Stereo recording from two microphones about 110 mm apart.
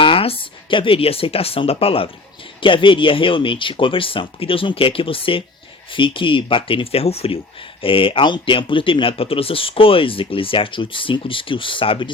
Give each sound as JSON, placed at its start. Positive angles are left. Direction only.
{"t": 0.0, "sound": "speech", "side_deg": 55}
{"t": 7.8, "sound": "speech", "side_deg": 55}